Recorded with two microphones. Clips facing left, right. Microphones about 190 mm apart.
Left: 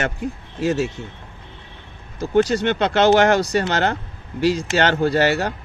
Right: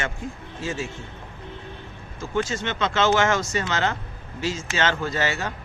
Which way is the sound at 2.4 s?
65° left (ahead or behind).